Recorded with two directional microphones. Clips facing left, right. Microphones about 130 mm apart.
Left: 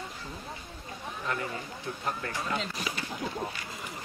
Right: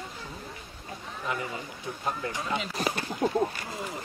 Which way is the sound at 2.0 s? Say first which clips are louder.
Right 2 dB; 20° right (ahead or behind).